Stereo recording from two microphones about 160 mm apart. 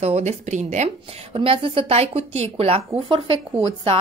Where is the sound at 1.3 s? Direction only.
35° right (ahead or behind).